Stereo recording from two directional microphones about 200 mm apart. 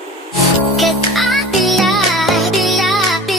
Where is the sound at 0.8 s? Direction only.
Centre (ahead or behind).